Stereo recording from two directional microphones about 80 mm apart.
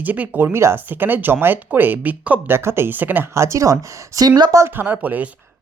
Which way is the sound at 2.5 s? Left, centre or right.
Right.